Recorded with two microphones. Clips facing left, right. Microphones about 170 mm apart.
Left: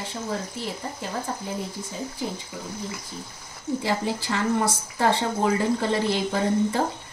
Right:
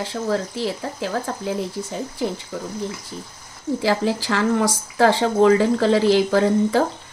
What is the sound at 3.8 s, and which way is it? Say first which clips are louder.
Speech: right 8 dB; 90° right.